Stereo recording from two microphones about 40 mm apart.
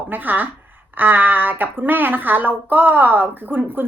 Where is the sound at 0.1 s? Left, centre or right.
Right.